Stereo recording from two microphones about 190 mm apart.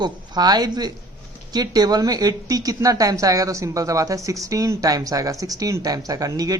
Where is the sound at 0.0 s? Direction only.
20° right (ahead or behind).